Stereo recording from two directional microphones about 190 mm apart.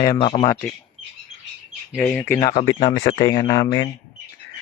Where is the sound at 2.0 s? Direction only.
5° left (ahead or behind).